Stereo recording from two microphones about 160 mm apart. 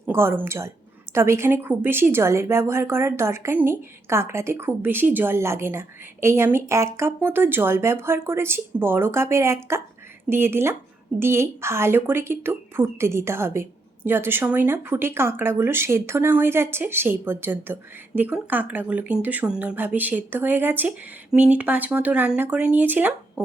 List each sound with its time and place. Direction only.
0.0 s a woman's voice: 15° right (ahead or behind)